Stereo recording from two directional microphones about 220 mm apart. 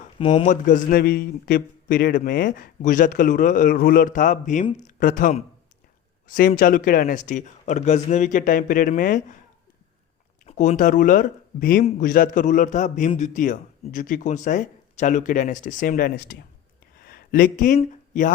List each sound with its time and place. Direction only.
0.0 s speech: 25° left (ahead or behind)
10.4 s speech: 30° left (ahead or behind)
17.0 s a sound: 40° left (ahead or behind)